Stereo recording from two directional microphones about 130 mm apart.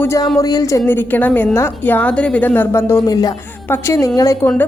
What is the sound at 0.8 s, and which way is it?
A woman's voice, 15° left (ahead or behind).